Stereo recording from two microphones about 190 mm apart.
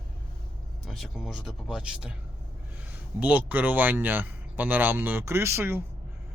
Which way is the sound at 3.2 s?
10° right (ahead or behind).